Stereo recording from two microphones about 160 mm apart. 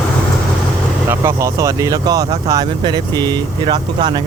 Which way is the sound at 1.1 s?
20° right (ahead or behind).